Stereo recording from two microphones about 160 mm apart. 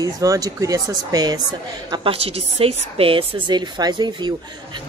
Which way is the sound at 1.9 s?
35° right (ahead or behind).